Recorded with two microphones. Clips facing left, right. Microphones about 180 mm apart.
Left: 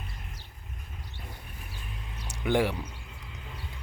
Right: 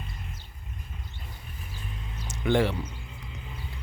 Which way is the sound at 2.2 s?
10° left (ahead or behind).